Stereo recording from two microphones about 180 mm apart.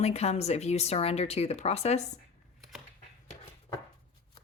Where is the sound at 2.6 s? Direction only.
Centre (ahead or behind).